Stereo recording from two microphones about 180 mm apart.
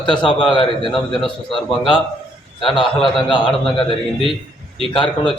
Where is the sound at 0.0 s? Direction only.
30° left (ahead or behind).